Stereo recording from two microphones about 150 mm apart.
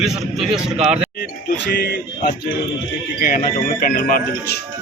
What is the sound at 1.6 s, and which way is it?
Speech, 85° left.